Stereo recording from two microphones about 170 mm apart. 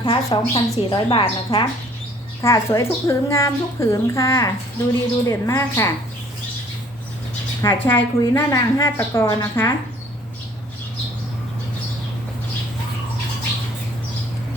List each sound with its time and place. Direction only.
0.0 s speech: 30° left (ahead or behind)
2.4 s a child's voice: 15° left (ahead or behind)
7.6 s a child's voice: 15° left (ahead or behind)